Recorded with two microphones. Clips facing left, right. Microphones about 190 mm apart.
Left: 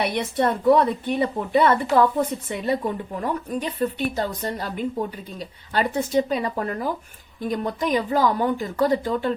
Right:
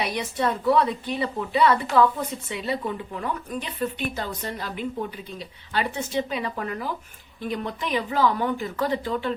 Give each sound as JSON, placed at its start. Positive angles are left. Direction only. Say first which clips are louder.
{"t": 0.0, "sound": "a woman's voice", "louder": "left 4 dB", "side_deg": 55}